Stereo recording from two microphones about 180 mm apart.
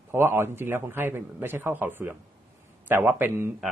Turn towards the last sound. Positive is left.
turn(degrees=-10)  # may be behind; listen again after turning